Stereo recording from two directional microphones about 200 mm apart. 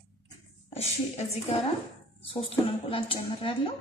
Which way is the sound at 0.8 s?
30° left (ahead or behind).